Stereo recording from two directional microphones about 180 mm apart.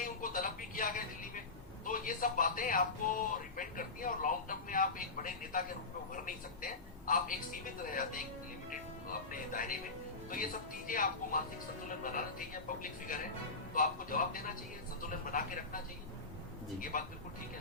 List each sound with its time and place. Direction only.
0.0 s a sound: 50° left (ahead or behind)
1.8 s speech: 50° left (ahead or behind)
9.3 s speech: 50° left (ahead or behind)
16.9 s speech: 45° left (ahead or behind)